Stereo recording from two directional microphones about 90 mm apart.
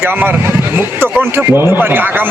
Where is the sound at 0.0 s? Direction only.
25° right (ahead or behind).